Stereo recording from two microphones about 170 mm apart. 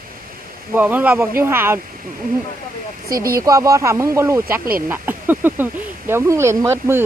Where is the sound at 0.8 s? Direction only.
10° right (ahead or behind).